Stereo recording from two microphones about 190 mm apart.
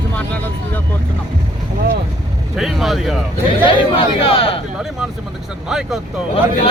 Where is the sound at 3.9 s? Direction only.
30° left (ahead or behind).